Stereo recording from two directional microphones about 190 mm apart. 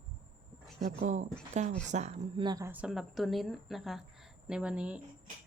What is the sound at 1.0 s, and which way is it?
A woman's voice, 40° right (ahead or behind).